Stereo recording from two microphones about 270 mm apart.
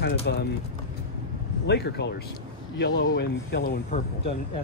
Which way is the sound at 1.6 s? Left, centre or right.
Left.